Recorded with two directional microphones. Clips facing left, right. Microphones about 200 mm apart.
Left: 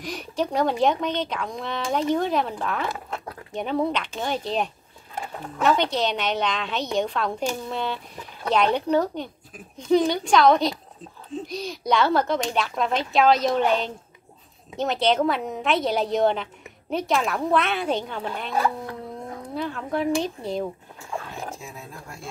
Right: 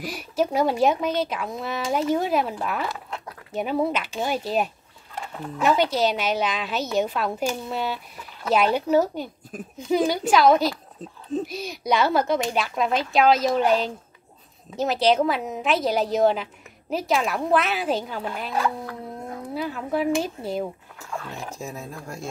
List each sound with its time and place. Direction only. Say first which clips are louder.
0.0 s speech: right 2 dB; 5° right (ahead or behind)
19.5 s speech: right 1 dB; 5° right (ahead or behind)
21.5 s speech: right 5 dB; 40° right (ahead or behind)